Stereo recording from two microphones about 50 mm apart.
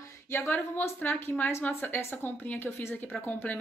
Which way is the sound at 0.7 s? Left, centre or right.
Left.